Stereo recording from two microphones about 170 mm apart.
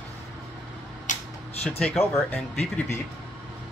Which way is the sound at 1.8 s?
10° left (ahead or behind).